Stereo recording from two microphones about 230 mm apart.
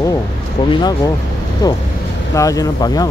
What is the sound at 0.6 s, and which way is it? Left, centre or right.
Speech, centre.